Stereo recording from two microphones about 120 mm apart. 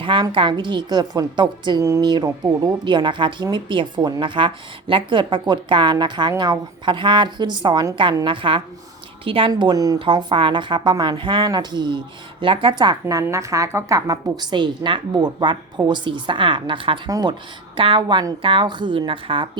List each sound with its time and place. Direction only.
0.0 s a woman's voice: 45° right (ahead or behind)
9.5 s a woman's voice: 35° right (ahead or behind)
10.0 s a woman's voice: 40° right (ahead or behind)
17.1 s a woman's voice: 30° right (ahead or behind)
17.7 s speech: 45° right (ahead or behind)